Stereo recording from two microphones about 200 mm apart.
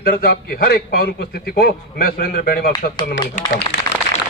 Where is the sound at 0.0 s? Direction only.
50° left (ahead or behind).